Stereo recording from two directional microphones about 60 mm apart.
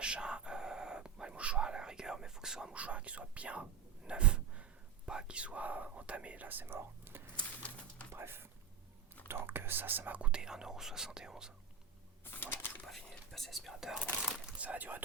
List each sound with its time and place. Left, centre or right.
0.0 s a sound: centre
5.0 s speech: centre; by 7.2 s right
7.3 s pigeon: left
8.1 s speech: right
10.2 s speech: centre
12.2 s a sound: left
12.8 s speech: centre
14.6 s speech: right